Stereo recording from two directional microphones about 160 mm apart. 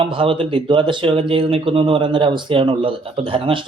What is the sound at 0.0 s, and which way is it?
Speech, 35° right (ahead or behind).